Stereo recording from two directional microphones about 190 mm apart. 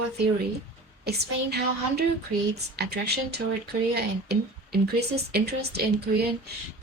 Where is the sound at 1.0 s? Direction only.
60° right (ahead or behind).